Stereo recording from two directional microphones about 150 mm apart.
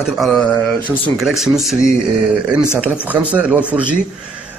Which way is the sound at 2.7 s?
10° right (ahead or behind).